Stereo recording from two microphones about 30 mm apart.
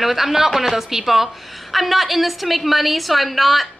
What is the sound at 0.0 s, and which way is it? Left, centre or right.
A woman's voice, centre.